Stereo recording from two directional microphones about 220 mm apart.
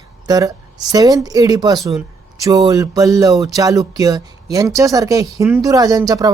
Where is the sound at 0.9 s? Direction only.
15° right (ahead or behind).